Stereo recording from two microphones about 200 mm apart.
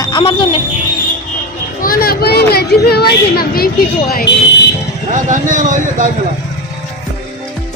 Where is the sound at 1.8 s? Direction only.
45° left (ahead or behind).